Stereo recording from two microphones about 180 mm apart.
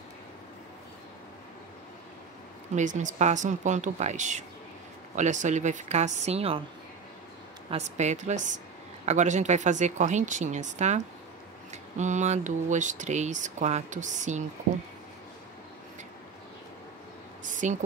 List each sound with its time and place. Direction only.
2.7 s speech: 45° right (ahead or behind)
7.7 s speech: 40° right (ahead or behind)
17.5 s a sound: 45° right (ahead or behind)